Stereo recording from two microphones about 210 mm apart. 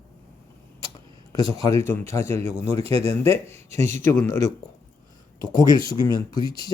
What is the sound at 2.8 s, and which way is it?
Speech, 25° right (ahead or behind).